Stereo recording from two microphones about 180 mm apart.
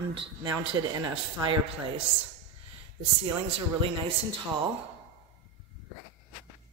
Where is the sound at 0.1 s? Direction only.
30° right (ahead or behind).